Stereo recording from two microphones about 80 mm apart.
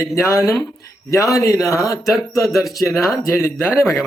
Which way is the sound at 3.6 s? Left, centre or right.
Left.